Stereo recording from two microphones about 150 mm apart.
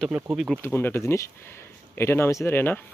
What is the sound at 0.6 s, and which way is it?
Speech, 15° left (ahead or behind).